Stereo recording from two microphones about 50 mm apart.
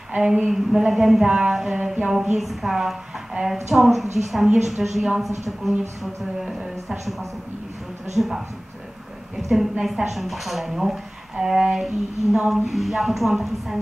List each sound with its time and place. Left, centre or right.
0.1 s speech: centre
1.2 s speech: centre
1.5 s a woman's voice: centre
6.4 s speech: centre
8.2 s a woman's voice: centre
9.4 s a woman's voice: centre